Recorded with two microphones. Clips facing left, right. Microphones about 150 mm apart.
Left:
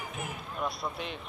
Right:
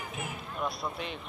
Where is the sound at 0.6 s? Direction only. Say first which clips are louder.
Even; centre (ahead or behind).